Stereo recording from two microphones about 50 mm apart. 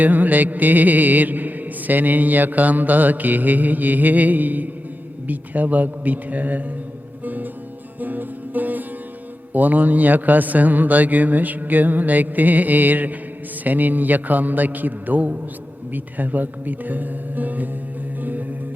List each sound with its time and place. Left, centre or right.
0.0 s music: right